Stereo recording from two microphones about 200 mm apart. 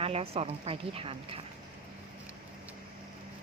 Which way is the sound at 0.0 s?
30° right (ahead or behind).